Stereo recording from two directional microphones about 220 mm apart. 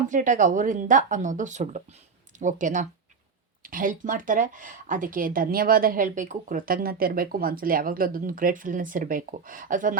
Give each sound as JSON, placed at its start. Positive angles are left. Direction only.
{"t": 0.1, "sound": "speech", "side_deg": -35}